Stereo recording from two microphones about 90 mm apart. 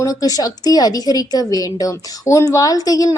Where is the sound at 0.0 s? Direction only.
45° left (ahead or behind).